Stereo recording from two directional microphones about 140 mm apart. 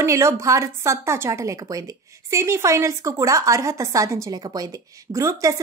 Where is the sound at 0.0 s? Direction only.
20° right (ahead or behind).